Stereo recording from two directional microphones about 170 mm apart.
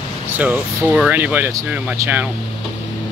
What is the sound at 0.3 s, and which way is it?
Speech, 10° right (ahead or behind).